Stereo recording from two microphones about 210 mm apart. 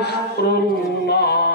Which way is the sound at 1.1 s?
50° left (ahead or behind).